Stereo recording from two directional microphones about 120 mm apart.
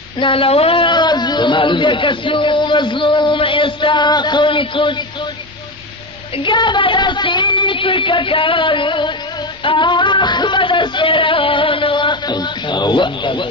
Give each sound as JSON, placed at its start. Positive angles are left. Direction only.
{"t": 0.2, "sound": "speech", "side_deg": 50}
{"t": 6.3, "sound": "music", "side_deg": 40}